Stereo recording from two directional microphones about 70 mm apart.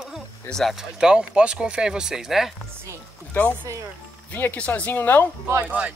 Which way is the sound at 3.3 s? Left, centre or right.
Left.